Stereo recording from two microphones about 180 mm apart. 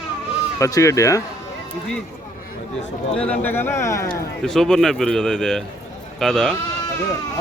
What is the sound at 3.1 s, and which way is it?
Speech, 5° left (ahead or behind).